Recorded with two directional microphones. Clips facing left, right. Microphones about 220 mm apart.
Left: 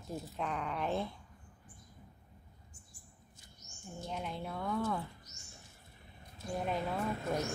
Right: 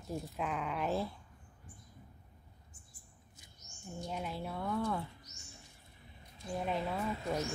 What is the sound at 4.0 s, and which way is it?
A woman's voice, centre (ahead or behind).